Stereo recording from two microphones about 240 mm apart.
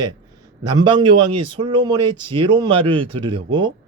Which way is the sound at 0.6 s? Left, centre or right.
Centre.